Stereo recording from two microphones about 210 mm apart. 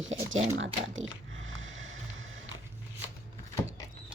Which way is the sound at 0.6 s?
65° right (ahead or behind).